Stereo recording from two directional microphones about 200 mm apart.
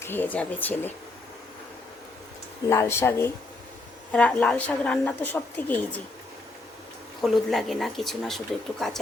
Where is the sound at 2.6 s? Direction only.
15° left (ahead or behind).